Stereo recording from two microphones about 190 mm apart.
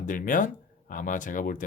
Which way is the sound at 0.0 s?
45° left (ahead or behind).